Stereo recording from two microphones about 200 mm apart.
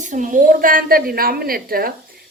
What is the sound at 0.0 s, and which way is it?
A woman's voice, 40° right (ahead or behind).